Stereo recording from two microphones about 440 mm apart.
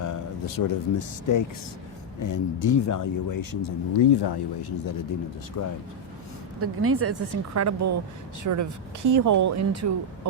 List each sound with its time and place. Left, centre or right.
0.0 s speech: left
5.6 s speech: left
6.6 s a woman's voice: right